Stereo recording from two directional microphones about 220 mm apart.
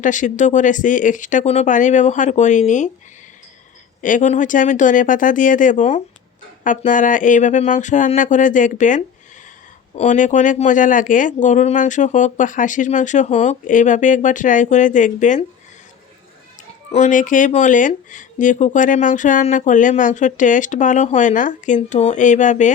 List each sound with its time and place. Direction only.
0.0 s speech: 35° left (ahead or behind)
4.0 s speech: 35° left (ahead or behind)
16.9 s speech: 35° left (ahead or behind)